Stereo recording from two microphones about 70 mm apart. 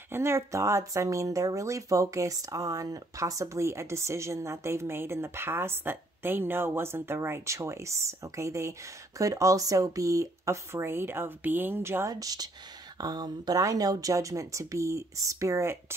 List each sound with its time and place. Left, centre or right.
0.1 s speech: right
12.1 s speech: right